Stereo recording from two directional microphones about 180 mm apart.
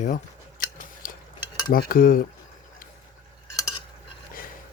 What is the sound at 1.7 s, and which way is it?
Speech, 50° left (ahead or behind).